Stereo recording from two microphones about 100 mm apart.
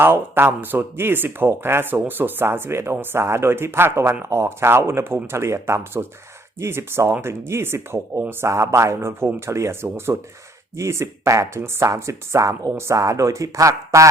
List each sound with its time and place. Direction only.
0.0 s speech: 20° right (ahead or behind)